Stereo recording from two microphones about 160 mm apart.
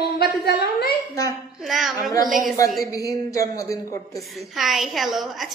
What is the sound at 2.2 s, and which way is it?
Speech, 60° right (ahead or behind).